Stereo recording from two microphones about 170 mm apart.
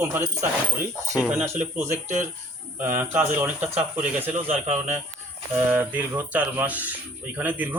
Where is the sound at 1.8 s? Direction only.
15° right (ahead or behind).